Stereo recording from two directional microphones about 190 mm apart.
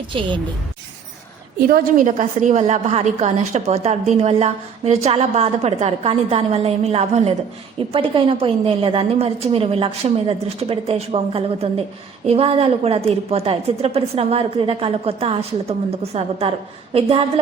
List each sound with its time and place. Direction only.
0.1 s a woman's voice: 25° right (ahead or behind)
1.6 s a woman's voice: 45° right (ahead or behind); by 17.4 s 30° right (ahead or behind)